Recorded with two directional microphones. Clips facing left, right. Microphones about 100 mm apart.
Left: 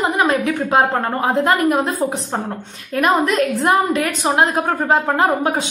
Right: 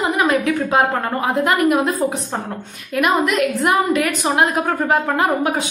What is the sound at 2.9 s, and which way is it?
A woman's voice, 35° left (ahead or behind).